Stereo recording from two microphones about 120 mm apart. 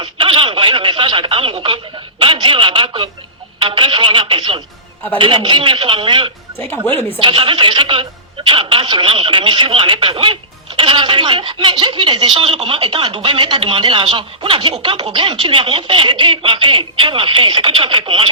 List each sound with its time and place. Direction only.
0.0 s speech: 45° right (ahead or behind)
6.8 s a woman's voice: 15° left (ahead or behind)
7.2 s speech: 50° right (ahead or behind)